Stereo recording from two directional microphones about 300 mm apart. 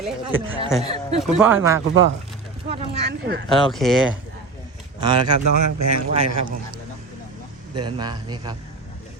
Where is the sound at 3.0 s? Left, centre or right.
Right.